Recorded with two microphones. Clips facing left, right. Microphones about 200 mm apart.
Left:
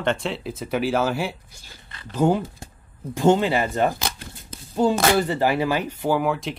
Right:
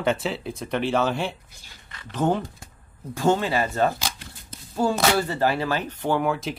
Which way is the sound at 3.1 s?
20° left (ahead or behind).